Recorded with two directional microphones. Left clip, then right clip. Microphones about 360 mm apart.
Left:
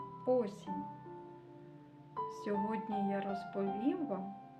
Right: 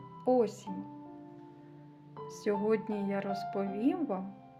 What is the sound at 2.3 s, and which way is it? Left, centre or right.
Speech, right.